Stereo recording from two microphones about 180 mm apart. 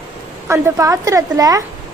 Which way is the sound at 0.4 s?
15° right (ahead or behind).